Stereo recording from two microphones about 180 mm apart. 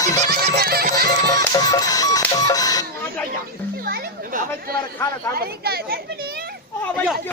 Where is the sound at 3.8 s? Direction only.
55° right (ahead or behind).